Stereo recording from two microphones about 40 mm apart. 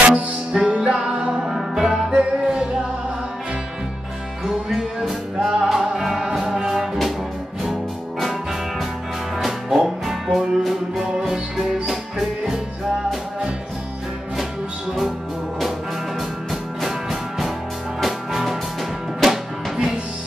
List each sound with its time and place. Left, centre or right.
0.1 s music: centre
1.3 s music: centre
4.5 s music: centre
8.2 s music: centre
16.2 s music: centre